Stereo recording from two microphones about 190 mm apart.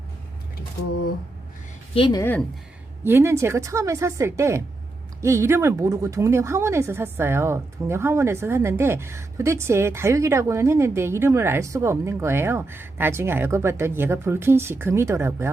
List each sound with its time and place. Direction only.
2.0 s speech: 20° left (ahead or behind)
2.2 s speech: 10° left (ahead or behind)
3.0 s speech: 15° right (ahead or behind)